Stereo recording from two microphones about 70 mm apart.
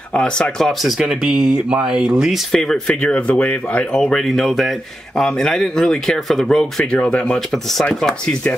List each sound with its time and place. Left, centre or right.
0.1 s speech: centre
2.9 s speech: centre
4.2 s speech: centre
6.9 s speech: centre